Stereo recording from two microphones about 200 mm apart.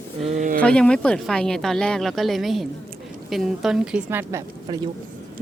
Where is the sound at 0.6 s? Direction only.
5° left (ahead or behind); by 4.8 s 15° right (ahead or behind).